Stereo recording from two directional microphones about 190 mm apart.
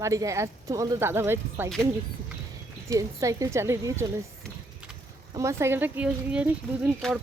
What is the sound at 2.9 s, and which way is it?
Speech, 15° right (ahead or behind).